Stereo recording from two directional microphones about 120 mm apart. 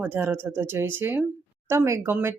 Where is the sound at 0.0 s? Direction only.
15° right (ahead or behind).